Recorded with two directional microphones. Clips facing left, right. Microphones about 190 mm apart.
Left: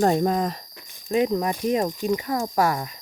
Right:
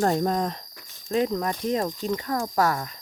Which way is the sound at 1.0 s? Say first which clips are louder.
Left 3 dB; 15° left (ahead or behind).